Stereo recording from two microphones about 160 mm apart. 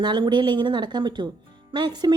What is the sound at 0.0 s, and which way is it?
Speech, 30° right (ahead or behind).